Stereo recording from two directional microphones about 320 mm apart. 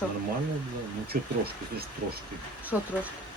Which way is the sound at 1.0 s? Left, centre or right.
Right.